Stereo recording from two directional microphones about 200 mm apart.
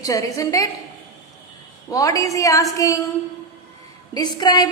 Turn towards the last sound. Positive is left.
turn(degrees=20)  # may be behind; listen again after turning